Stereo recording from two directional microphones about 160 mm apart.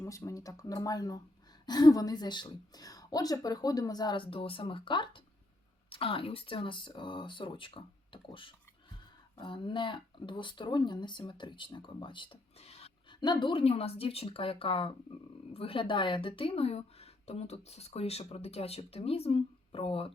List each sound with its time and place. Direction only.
0.0 s speech: 20° left (ahead or behind); by 13.1 s 40° left (ahead or behind)
13.1 s speech: 25° left (ahead or behind)